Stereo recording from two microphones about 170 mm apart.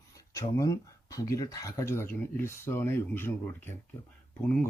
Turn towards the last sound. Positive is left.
turn(degrees=5)  # may be behind; listen again after turning